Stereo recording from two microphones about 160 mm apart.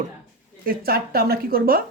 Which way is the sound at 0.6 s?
70° right (ahead or behind).